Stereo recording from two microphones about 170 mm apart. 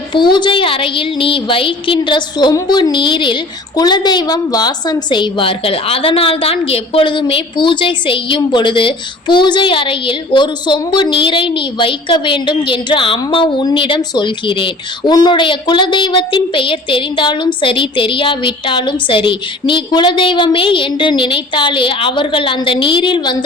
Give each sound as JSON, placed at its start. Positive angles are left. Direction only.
{"t": 0.1, "sound": "a woman's voice", "side_deg": 25}